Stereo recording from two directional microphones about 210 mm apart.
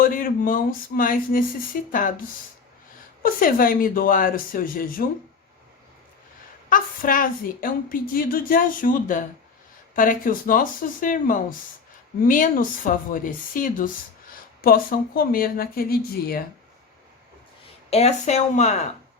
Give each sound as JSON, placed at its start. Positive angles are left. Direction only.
{"t": 0.0, "sound": "speech", "side_deg": 40}
{"t": 3.2, "sound": "speech", "side_deg": 40}
{"t": 6.7, "sound": "speech", "side_deg": 40}
{"t": 17.9, "sound": "speech", "side_deg": 30}